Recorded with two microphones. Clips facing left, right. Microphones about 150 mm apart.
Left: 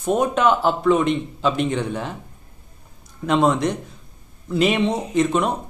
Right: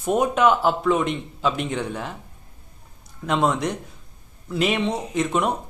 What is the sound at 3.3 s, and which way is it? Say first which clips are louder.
Speech: left 4 dB; centre (ahead or behind).